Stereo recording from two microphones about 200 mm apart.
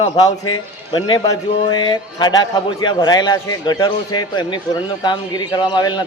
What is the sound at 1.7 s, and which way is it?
Speech, 20° left (ahead or behind).